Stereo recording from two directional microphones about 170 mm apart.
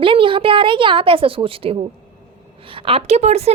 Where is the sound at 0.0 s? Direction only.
30° right (ahead or behind).